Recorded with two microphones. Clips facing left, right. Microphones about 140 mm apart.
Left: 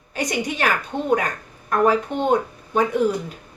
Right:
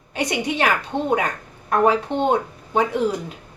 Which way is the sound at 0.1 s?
25° right (ahead or behind).